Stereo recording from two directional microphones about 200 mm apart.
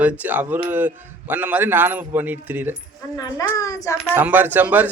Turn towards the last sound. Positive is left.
turn(degrees=-10)  # may be behind; listen again after turning